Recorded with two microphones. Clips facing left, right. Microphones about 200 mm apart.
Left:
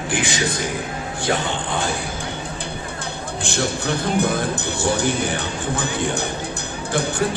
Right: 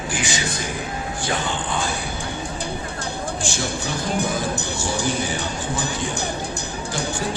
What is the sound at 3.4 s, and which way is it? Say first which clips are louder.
Speech: left 7 dB; 60° left (ahead or behind).